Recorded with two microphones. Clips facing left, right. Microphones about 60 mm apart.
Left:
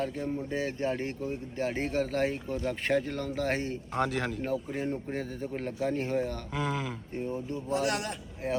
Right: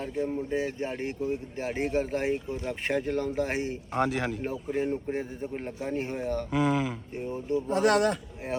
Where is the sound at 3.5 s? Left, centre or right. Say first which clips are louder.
Right 2 dB; centre.